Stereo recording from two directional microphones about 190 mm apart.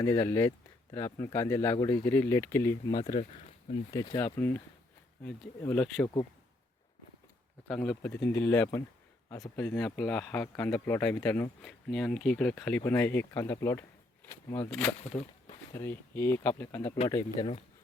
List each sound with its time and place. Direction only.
0.0 s speech: 15° left (ahead or behind)
3.0 s speech: 30° left (ahead or behind)
4.4 s speech: 10° left (ahead or behind)
7.7 s speech: 5° left (ahead or behind)